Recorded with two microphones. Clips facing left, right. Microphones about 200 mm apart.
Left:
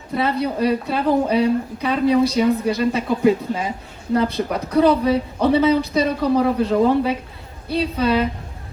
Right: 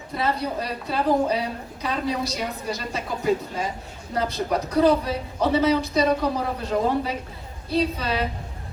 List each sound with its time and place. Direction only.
0.1 s a woman's voice: 55° left (ahead or behind)